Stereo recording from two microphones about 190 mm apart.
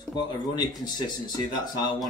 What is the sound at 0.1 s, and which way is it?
Speech, 20° left (ahead or behind).